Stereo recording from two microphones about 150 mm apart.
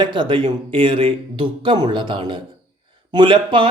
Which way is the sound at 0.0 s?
30° right (ahead or behind).